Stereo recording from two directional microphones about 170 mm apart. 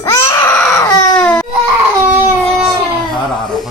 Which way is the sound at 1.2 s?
5° left (ahead or behind).